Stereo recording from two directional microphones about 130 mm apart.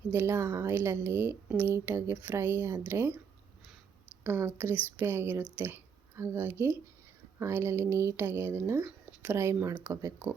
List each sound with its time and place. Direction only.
0.1 s speech: 15° right (ahead or behind)
4.2 s speech: 20° right (ahead or behind)